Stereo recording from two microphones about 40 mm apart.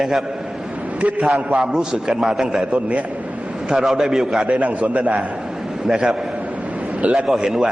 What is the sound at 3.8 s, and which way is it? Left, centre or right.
Speech, centre.